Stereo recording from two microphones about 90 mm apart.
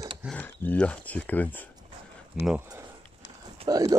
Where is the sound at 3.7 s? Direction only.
40° right (ahead or behind).